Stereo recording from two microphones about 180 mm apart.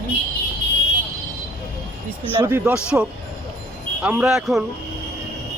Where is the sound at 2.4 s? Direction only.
15° right (ahead or behind).